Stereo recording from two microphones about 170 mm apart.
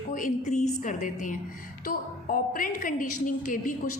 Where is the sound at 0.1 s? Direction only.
45° left (ahead or behind).